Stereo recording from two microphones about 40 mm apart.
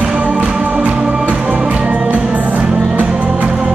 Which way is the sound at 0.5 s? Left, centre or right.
Right.